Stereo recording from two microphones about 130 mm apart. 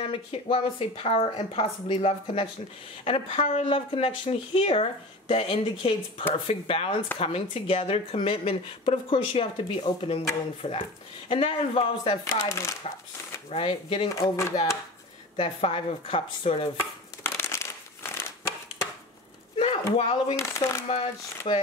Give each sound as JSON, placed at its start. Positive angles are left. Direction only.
{"t": 0.0, "sound": "speech", "side_deg": 45}
{"t": 12.3, "sound": "speech", "side_deg": 20}
{"t": 13.5, "sound": "speech", "side_deg": 45}
{"t": 14.1, "sound": "speech", "side_deg": 25}
{"t": 15.3, "sound": "speech", "side_deg": 45}
{"t": 17.2, "sound": "crumpling", "side_deg": 20}
{"t": 19.5, "sound": "a sound", "side_deg": 50}
{"t": 20.0, "sound": "speech", "side_deg": 50}
{"t": 20.3, "sound": "speech", "side_deg": 20}
{"t": 21.5, "sound": "speech", "side_deg": 50}